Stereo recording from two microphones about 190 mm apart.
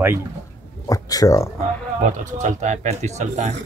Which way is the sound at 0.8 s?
20° left (ahead or behind).